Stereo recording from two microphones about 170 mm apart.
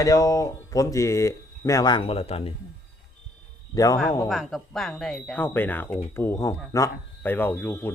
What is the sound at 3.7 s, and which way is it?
Speech, 20° left (ahead or behind).